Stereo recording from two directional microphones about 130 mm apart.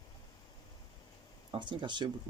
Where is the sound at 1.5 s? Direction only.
40° right (ahead or behind).